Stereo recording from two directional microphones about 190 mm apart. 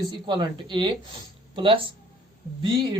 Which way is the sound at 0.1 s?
25° right (ahead or behind).